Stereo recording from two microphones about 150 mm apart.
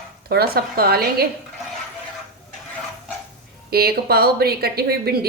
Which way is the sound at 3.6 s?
90° right.